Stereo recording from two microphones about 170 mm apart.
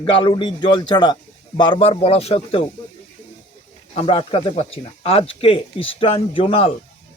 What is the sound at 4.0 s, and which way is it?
Speech, 35° left (ahead or behind).